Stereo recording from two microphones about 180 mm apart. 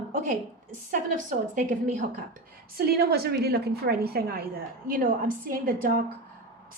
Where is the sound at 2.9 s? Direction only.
60° right (ahead or behind).